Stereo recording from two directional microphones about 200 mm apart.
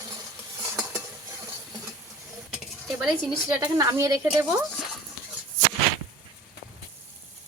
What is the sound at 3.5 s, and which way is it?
Speech, 20° right (ahead or behind).